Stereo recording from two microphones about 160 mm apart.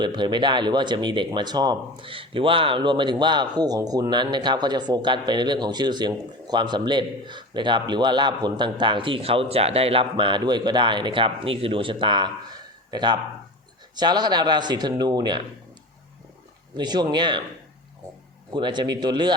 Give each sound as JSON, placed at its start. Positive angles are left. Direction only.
{"t": 0.0, "sound": "speech", "side_deg": -30}
{"t": 16.7, "sound": "speech", "side_deg": -25}
{"t": 18.5, "sound": "speech", "side_deg": -30}